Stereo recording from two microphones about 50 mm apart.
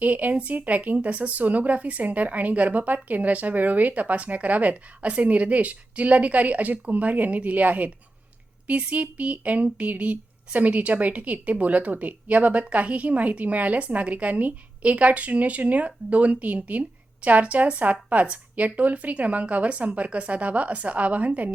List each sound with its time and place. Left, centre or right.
0.0 s speech: right